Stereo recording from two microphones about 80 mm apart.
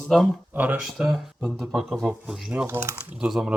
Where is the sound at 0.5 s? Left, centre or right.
Right.